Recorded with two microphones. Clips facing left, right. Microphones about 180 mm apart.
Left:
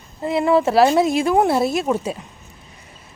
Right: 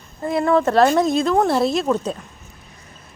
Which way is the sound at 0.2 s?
5° left (ahead or behind).